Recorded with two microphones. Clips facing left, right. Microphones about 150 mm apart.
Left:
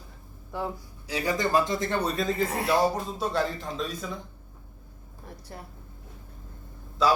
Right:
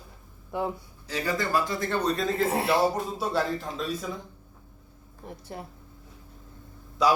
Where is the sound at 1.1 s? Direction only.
15° left (ahead or behind).